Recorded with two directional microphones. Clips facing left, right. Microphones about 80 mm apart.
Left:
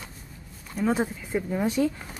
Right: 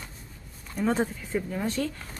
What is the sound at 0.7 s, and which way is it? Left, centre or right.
Speech, centre.